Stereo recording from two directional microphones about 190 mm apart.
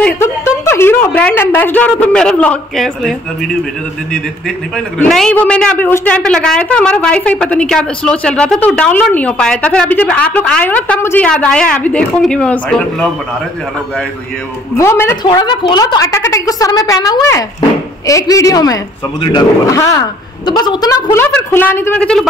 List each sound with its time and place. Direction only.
0.0 s a woman's voice: 15° left (ahead or behind)
14.8 s a man's voice: 15° left (ahead or behind)